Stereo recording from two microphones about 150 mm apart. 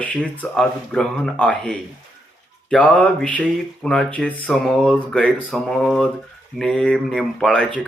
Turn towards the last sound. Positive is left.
turn(degrees=5)  # may be behind; listen again after turning